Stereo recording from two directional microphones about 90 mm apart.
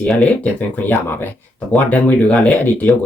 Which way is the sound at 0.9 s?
20° left (ahead or behind).